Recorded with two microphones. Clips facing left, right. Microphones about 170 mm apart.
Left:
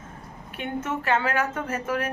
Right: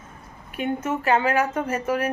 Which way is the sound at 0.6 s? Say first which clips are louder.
Right 4 dB; 10° right (ahead or behind).